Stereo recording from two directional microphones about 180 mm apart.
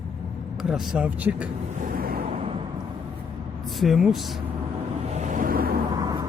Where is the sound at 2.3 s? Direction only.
30° right (ahead or behind).